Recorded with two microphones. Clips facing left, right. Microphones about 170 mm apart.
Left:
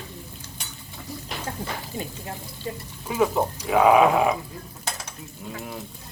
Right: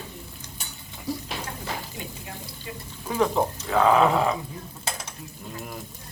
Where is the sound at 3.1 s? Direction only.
5° left (ahead or behind).